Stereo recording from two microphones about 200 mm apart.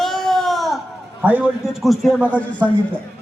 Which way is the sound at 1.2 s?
5° right (ahead or behind).